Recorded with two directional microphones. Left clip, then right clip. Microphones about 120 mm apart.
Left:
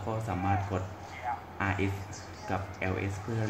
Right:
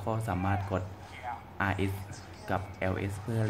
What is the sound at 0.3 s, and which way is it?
Speech, 40° right (ahead or behind).